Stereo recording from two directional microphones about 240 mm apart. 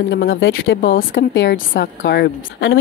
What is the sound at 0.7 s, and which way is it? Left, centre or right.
A woman's voice, left.